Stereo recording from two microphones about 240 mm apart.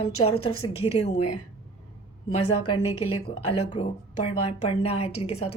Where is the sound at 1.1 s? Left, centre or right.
Left.